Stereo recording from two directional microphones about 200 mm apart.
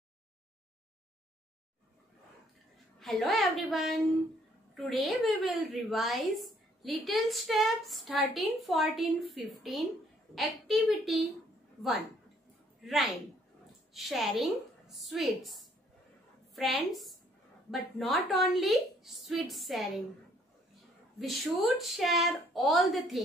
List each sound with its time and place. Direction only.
3.0 s a woman's voice: centre (ahead or behind)
12.8 s a woman's voice: centre (ahead or behind)
21.2 s a woman's voice: centre (ahead or behind)